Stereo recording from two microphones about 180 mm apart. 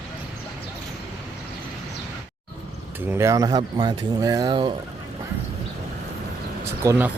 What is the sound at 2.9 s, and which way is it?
Speech, 10° right (ahead or behind).